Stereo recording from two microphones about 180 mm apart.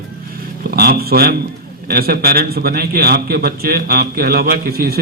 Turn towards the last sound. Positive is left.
turn(degrees=-60)  # may be behind; listen again after turning